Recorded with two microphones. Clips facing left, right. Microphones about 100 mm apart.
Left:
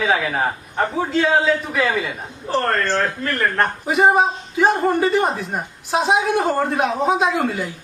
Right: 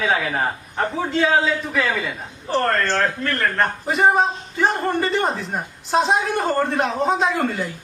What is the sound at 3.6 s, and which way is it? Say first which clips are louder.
A man's voice: left 2 dB; 5° left (ahead or behind).